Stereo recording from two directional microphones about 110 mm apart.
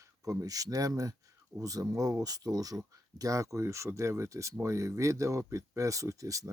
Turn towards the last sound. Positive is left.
turn(degrees=-30)  # may be behind; listen again after turning